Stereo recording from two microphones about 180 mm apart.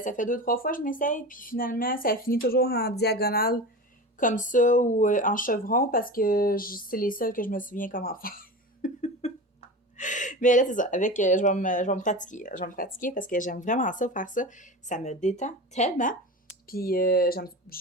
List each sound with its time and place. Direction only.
0.0 s speech: 45° left (ahead or behind)
9.0 s speech: 40° left (ahead or behind)
16.6 s speech: 55° left (ahead or behind)